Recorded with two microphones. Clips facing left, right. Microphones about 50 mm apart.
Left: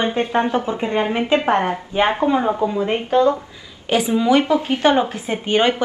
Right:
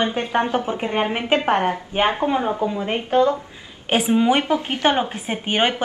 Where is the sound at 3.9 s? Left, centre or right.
Right.